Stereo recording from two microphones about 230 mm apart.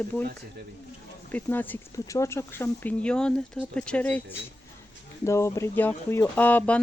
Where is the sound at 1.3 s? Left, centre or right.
Centre.